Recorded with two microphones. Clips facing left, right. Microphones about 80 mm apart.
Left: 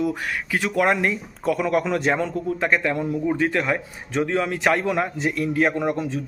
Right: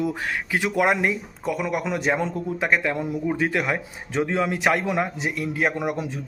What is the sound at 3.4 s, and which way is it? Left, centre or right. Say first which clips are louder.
Speech: left 2 dB; centre.